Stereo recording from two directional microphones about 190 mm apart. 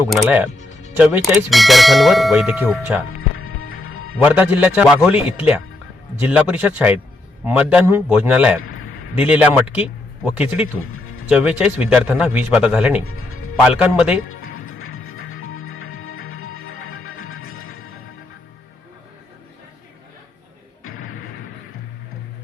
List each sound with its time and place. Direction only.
0.1 s a man's voice: 5° right (ahead or behind)
0.9 s clang: 5° right (ahead or behind)
3.1 s music: 90° left
4.2 s a man's voice: 10° right (ahead or behind)
10.9 s music: 90° left
11.3 s a man's voice: 5° right (ahead or behind)
13.1 s music: 90° left
13.7 s a man's voice: 5° right (ahead or behind)
14.3 s music: 90° left
20.8 s music: 90° left